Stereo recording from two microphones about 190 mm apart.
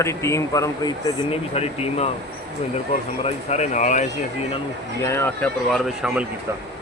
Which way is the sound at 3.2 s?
35° left (ahead or behind).